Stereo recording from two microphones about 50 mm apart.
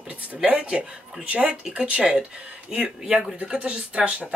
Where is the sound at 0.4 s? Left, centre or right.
Right.